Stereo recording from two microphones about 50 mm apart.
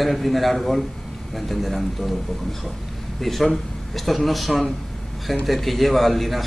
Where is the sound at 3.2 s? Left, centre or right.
Centre.